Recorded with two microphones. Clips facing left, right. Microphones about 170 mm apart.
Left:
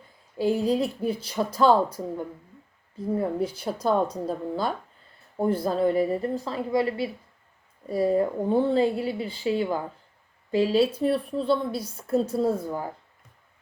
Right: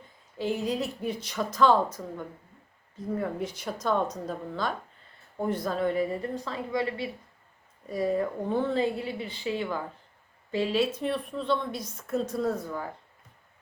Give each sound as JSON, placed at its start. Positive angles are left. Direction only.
{"t": 0.3, "sound": "a woman's voice", "side_deg": 35}
{"t": 5.4, "sound": "a woman's voice", "side_deg": 30}